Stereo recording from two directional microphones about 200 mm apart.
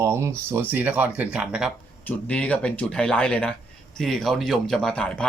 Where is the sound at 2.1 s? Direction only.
5° left (ahead or behind).